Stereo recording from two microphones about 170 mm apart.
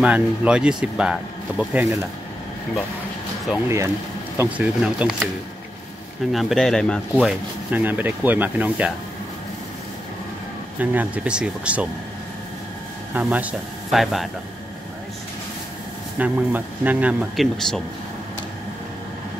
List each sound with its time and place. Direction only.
0.0 s speech: 5° right (ahead or behind)
3.6 s speech: 15° right (ahead or behind)
6.3 s speech: centre (ahead or behind)
7.7 s speech: 10° right (ahead or behind)
10.8 s speech: 10° right (ahead or behind)
13.1 s speech: 10° right (ahead or behind)
16.2 s speech: 10° right (ahead or behind)